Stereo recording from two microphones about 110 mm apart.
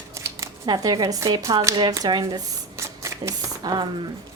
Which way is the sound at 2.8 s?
25° right (ahead or behind).